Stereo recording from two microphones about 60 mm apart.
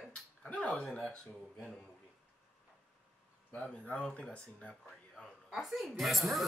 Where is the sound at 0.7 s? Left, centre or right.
Centre.